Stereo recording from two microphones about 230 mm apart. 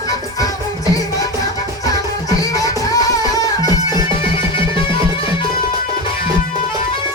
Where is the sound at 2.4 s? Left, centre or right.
Centre.